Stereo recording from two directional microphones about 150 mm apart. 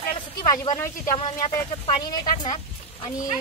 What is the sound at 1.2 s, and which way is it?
Speech, 35° left (ahead or behind).